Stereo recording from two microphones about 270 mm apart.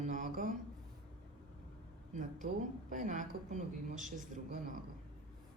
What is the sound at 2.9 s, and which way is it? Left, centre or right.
Speech, right.